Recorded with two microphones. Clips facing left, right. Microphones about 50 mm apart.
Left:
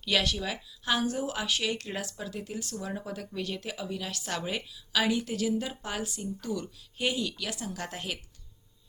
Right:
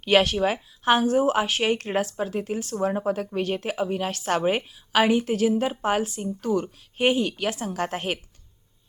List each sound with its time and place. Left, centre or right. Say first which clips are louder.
0.0 s speech: right 9 dB; right